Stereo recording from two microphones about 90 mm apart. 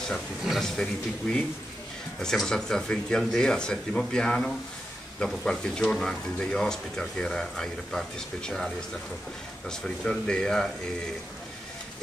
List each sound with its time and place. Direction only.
0.1 s speech: centre (ahead or behind)
2.1 s speech: 5° left (ahead or behind)
9.7 s speech: 10° left (ahead or behind)